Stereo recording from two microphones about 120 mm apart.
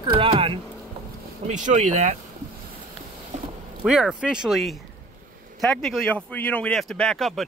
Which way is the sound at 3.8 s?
5° right (ahead or behind).